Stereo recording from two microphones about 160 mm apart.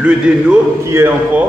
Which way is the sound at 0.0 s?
5° right (ahead or behind).